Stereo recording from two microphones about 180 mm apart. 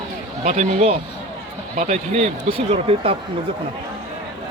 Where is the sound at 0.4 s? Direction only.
40° right (ahead or behind).